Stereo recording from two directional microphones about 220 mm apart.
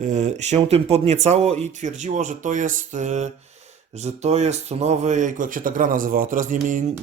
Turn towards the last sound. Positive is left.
turn(degrees=-35)  # may be behind; listen again after turning